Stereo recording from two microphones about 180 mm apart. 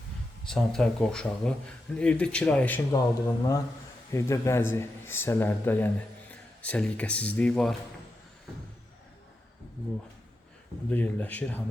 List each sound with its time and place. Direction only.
0.4 s a man's voice: 5° left (ahead or behind)
10.8 s speech: 10° left (ahead or behind)